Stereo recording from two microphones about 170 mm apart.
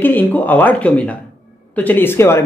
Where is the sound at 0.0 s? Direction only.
10° left (ahead or behind).